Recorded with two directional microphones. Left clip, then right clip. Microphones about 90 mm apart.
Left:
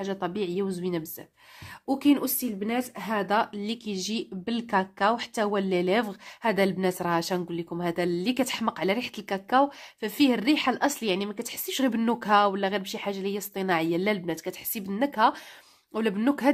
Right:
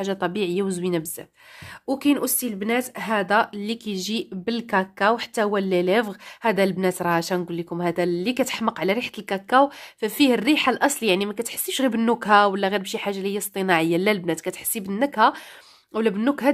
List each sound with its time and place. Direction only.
0.0 s a woman's voice: 75° right (ahead or behind)
1.9 s speech: 25° right (ahead or behind)
2.2 s a woman's voice: 55° right (ahead or behind)
11.6 s speech: 40° right (ahead or behind)